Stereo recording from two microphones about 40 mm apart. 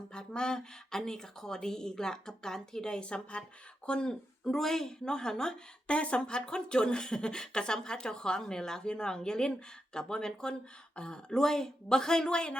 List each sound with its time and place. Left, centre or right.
0.1 s speech: left
4.4 s speech: centre
5.9 s speech: left